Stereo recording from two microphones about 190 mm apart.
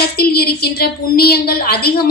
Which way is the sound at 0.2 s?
55° left (ahead or behind).